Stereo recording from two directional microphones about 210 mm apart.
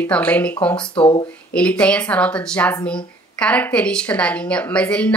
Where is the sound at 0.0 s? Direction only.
5° left (ahead or behind).